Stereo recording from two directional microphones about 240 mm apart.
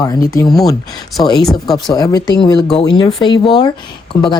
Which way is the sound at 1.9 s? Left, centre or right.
Centre.